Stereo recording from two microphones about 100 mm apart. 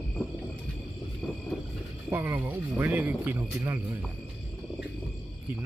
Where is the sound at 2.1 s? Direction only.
20° right (ahead or behind).